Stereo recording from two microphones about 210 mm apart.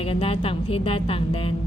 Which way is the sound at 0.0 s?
25° left (ahead or behind).